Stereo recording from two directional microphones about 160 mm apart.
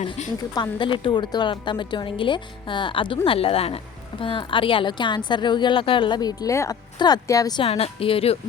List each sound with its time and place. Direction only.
0.2 s a woman's voice: 45° left (ahead or behind)
0.5 s a woman's voice: 30° left (ahead or behind)
7.6 s a woman's voice: 35° left (ahead or behind)